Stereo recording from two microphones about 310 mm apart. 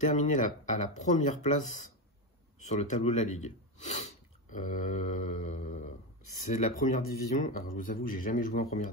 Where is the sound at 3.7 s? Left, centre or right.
Left.